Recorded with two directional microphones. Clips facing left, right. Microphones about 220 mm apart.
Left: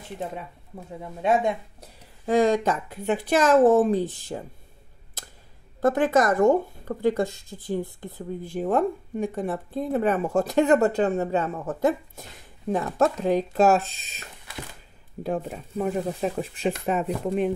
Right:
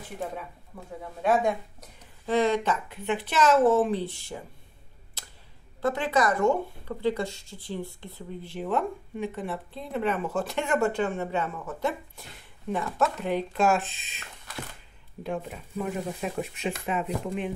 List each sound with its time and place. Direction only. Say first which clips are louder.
1.2 s speech: left 1 dB; 25° left (ahead or behind)
2.2 s a woman's voice: left 4 dB; 45° left (ahead or behind)
5.8 s a woman's voice: left 5 dB; 45° left (ahead or behind)
15.2 s speech: left 4 dB; 40° left (ahead or behind)